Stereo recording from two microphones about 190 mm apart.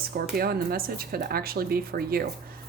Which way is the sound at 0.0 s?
50° right (ahead or behind).